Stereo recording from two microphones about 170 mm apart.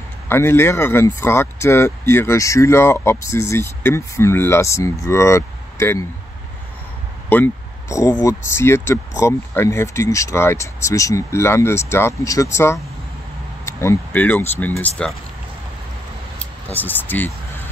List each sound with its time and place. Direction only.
0.3 s speech: 15° left (ahead or behind)
7.2 s speech: 10° left (ahead or behind)
16.3 s speech: 10° left (ahead or behind)